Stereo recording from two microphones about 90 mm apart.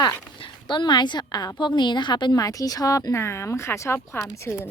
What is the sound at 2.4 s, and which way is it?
Speech, 40° left (ahead or behind).